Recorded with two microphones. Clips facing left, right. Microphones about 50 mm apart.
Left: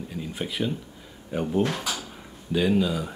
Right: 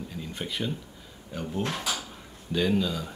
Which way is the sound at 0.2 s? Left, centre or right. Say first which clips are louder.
Left 4 dB; centre.